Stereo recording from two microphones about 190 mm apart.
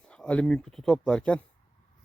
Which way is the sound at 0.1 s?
5° left (ahead or behind).